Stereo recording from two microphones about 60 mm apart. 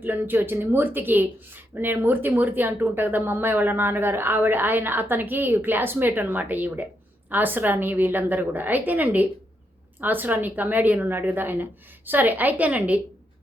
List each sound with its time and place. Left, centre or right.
0.0 s speech: right